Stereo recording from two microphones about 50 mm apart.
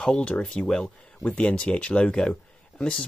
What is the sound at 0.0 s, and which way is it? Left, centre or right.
Speech, centre.